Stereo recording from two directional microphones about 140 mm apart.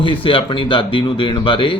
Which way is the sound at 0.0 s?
40° left (ahead or behind).